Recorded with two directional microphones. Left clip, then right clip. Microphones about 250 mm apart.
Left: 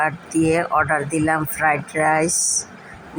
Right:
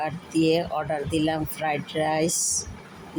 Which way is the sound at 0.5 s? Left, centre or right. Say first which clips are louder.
Left 7 dB; centre.